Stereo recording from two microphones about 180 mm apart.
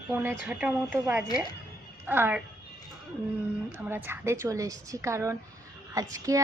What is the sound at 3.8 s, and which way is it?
A woman's voice, 10° right (ahead or behind).